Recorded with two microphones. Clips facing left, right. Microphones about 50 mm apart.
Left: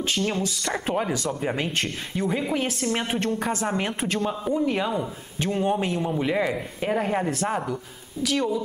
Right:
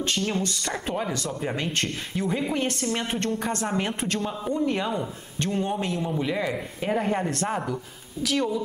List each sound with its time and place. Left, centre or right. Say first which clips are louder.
0.3 s a man's voice: even; centre
0.8 s speech: left 4 dB; centre
1.1 s a man's voice: left 3 dB; centre
6.2 s a man's voice: left 3 dB; centre